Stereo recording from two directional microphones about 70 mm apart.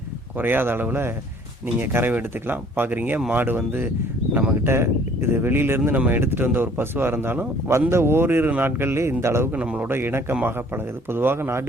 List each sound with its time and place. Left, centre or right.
0.3 s speech: right
9.6 s a man's voice: centre
9.8 s speech: right